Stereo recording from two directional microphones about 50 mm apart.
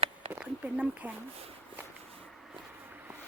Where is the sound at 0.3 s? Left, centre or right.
Right.